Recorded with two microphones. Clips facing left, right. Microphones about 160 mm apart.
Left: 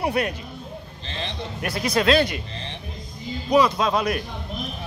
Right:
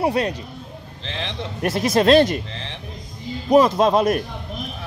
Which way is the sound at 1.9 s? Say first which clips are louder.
Right 5 dB; 40° right (ahead or behind).